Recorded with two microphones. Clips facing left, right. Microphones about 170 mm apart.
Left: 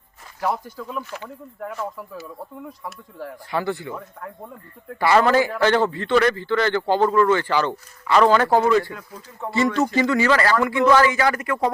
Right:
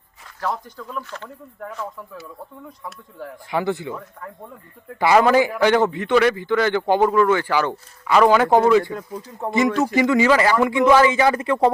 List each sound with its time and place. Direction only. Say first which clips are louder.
0.4 s speech: left 2 dB; 10° left (ahead or behind)
3.5 s speech: right 2 dB; 20° right (ahead or behind)
4.9 s a man's voice: right 2 dB; 15° right (ahead or behind)